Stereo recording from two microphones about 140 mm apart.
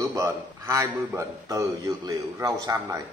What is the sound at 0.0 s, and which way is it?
A man's voice, 25° right (ahead or behind).